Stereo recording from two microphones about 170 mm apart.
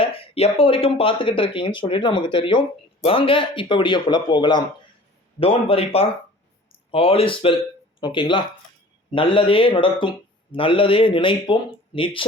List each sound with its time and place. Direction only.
0.0 s speech: 35° left (ahead or behind)